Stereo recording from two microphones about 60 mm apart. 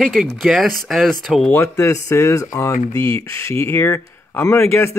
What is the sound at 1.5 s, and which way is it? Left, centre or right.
Speech, left.